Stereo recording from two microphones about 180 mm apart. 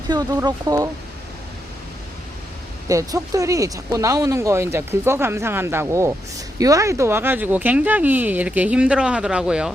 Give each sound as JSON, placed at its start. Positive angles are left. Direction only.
{"t": 0.1, "sound": "speech", "side_deg": -25}
{"t": 2.9, "sound": "speech", "side_deg": -20}